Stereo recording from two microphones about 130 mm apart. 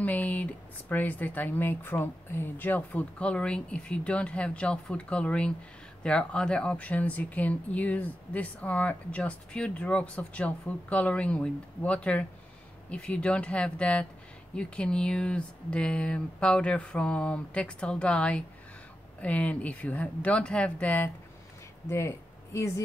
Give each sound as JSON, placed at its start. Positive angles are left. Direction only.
{"t": 0.0, "sound": "speech", "side_deg": 10}